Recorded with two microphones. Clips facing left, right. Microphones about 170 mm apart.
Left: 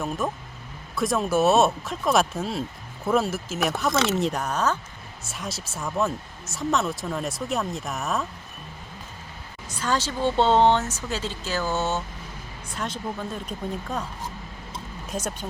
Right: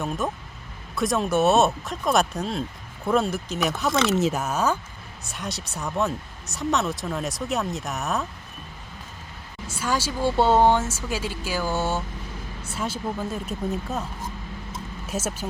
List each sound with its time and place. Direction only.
0.2 s speech: centre (ahead or behind)
9.6 s speech: 10° right (ahead or behind)
15.0 s speech: 5° right (ahead or behind)